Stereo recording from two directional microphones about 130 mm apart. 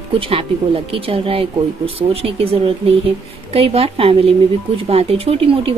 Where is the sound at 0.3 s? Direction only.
45° right (ahead or behind).